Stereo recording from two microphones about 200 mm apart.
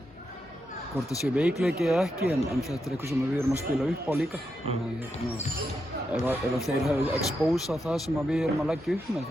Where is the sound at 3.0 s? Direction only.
10° right (ahead or behind).